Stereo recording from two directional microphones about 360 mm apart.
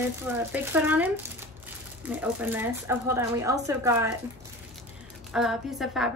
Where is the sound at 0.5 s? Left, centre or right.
Centre.